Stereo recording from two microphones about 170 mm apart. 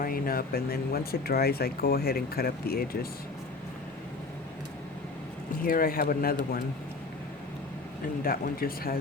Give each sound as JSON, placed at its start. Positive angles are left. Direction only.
{"t": 0.0, "sound": "speech", "side_deg": 60}
{"t": 5.6, "sound": "speech", "side_deg": 60}
{"t": 8.2, "sound": "speech", "side_deg": 60}